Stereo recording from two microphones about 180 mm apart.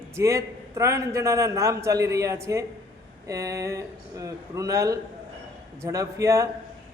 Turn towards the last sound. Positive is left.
turn(degrees=-15)  # may be behind; listen again after turning